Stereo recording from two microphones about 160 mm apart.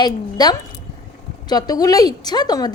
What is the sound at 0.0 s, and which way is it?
Speech, 25° left (ahead or behind).